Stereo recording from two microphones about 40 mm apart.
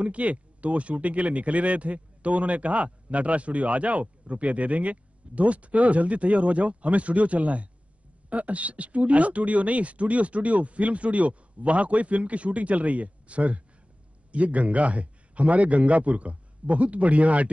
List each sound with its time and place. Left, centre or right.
0.0 s speech: right